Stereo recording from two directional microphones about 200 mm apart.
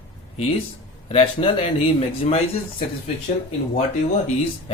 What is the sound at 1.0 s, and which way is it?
A man's voice, 30° left (ahead or behind).